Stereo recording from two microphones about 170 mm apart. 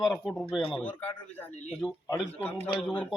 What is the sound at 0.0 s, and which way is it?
A man's voice, centre (ahead or behind).